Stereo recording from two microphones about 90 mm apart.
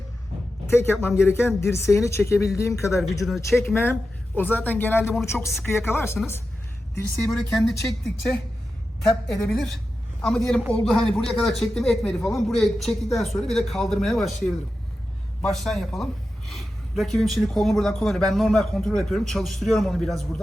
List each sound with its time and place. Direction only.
0.7 s speech: 30° left (ahead or behind)
3.0 s speech: centre (ahead or behind)
4.4 s speech: 20° left (ahead or behind)
7.3 s speech: 5° left (ahead or behind)
9.2 s speech: 5° left (ahead or behind)